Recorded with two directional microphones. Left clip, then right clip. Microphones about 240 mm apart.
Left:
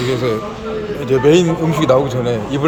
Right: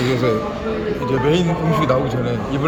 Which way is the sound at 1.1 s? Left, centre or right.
Left.